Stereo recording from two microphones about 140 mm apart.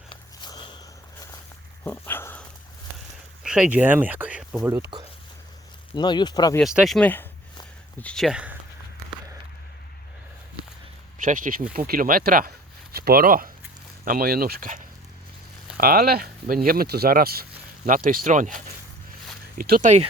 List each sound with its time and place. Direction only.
0.1 s sniff: 35° left (ahead or behind)
1.8 s dog: 15° left (ahead or behind)
3.4 s speech: 5° right (ahead or behind)
4.6 s speech: 20° right (ahead or behind)
5.9 s speech: 30° left (ahead or behind)
6.6 s speech: centre (ahead or behind)
11.2 s speech: 75° right (ahead or behind)
11.7 s speech: 90° right; by 18.6 s 65° right (ahead or behind)
19.5 s speech: 90° right